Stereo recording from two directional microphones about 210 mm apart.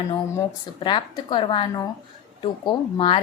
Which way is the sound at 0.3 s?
20° left (ahead or behind).